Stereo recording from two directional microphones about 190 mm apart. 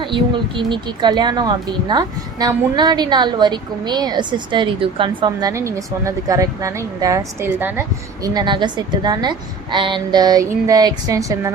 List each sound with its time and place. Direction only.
0.0 s speech: 25° right (ahead or behind)